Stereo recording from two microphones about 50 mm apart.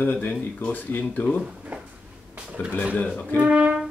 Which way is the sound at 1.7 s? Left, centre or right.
Right.